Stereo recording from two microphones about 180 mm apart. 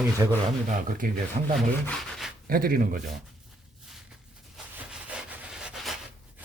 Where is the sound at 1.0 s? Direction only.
50° right (ahead or behind).